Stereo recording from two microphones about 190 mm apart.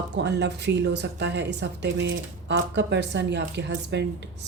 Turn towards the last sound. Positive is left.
turn(degrees=-65)  # may be behind; listen again after turning